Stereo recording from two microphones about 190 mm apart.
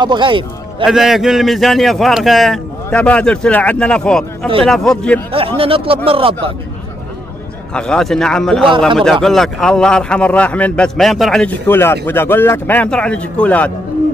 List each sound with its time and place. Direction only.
0.0 s a man's voice: 25° right (ahead or behind)
0.8 s a man's voice: centre (ahead or behind)
5.6 s speech: 30° right (ahead or behind)
7.7 s a man's voice: 5° left (ahead or behind)
8.6 s speech: 25° right (ahead or behind)
8.9 s a man's voice: centre (ahead or behind)